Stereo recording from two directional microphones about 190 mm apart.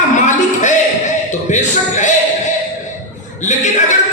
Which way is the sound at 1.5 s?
40° left (ahead or behind).